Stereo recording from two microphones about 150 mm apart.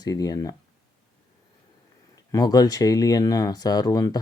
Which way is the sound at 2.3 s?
25° left (ahead or behind).